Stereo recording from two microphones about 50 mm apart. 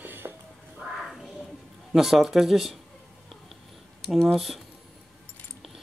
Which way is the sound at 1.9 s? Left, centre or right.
Centre.